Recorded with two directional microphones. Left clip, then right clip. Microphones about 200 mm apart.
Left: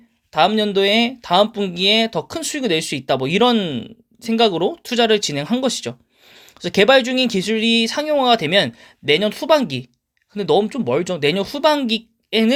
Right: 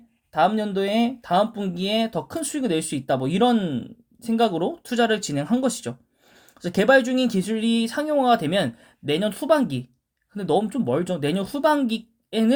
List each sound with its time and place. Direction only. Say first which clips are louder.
0.3 s speech: left 5 dB; 25° left (ahead or behind)